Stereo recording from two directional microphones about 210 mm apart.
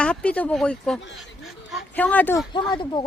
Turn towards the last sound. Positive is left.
turn(degrees=20)  # may be behind; listen again after turning